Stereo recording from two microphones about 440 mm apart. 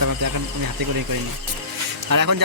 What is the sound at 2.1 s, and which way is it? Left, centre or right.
Speech, right.